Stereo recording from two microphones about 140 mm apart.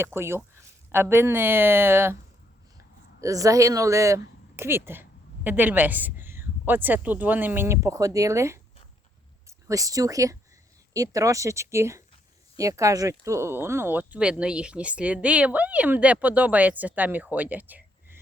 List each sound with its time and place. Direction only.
0.0 s speech: 15° right (ahead or behind)
3.2 s speech: 25° right (ahead or behind)